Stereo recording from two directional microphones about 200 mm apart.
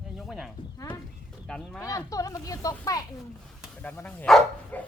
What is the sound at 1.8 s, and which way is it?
Speech, 15° left (ahead or behind).